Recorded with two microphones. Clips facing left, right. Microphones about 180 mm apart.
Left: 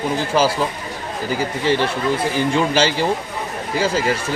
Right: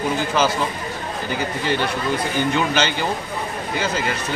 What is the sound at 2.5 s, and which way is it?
Speech, 30° left (ahead or behind).